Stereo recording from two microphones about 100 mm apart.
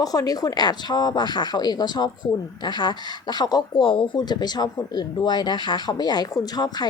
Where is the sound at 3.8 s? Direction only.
60° left (ahead or behind); by 6.9 s 45° left (ahead or behind).